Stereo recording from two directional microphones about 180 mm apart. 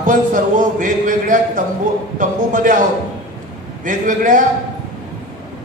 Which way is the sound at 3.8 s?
45° right (ahead or behind).